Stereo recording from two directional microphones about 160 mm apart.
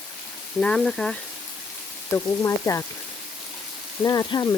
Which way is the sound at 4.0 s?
25° left (ahead or behind).